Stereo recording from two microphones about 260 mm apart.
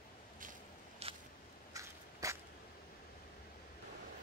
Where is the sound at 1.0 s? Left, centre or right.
Right.